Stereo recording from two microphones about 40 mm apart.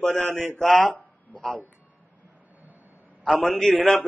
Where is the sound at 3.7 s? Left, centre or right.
Centre.